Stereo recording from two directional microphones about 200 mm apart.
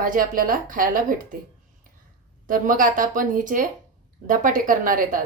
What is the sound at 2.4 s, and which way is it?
A woman's voice, 45° right (ahead or behind).